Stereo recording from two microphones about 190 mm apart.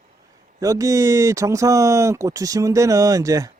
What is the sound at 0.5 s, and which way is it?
Speech, 15° right (ahead or behind).